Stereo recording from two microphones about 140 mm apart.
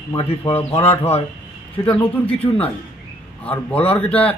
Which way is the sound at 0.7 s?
15° left (ahead or behind).